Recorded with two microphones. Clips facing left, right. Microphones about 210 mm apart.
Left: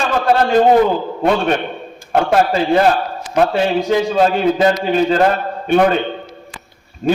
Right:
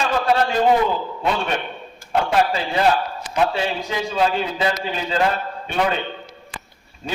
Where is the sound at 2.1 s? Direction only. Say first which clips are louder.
Left 5 dB; 50° left (ahead or behind).